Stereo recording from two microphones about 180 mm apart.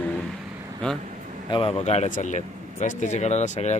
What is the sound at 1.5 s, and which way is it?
Speech, 30° left (ahead or behind).